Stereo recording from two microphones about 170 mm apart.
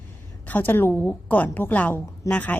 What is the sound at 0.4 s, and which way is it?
A woman's voice, 10° left (ahead or behind).